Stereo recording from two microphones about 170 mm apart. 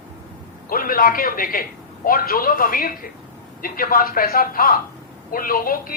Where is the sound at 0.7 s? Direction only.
55° left (ahead or behind).